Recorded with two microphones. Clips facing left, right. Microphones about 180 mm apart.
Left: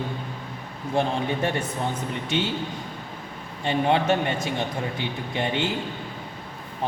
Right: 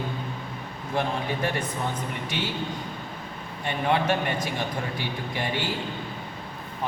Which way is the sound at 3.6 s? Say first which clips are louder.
Left 3 dB; 25° left (ahead or behind).